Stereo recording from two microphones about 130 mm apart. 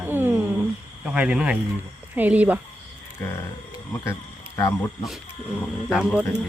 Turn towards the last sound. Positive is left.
turn(degrees=-5)  # may be behind; listen again after turning